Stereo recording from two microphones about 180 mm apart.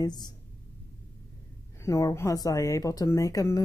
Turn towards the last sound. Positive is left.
turn(degrees=15)  # may be behind; listen again after turning